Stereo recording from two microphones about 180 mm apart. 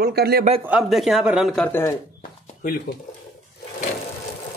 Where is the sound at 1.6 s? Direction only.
10° left (ahead or behind).